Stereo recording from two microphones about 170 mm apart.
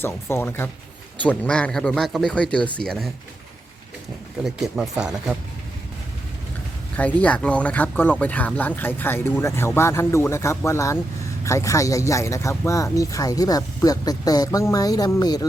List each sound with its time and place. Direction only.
0.0 s speech: 15° left (ahead or behind)
4.4 s speech: 5° right (ahead or behind)
6.9 s speech: 10° left (ahead or behind)